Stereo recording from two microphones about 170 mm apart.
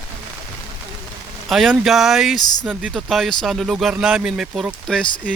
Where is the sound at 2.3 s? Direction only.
25° left (ahead or behind).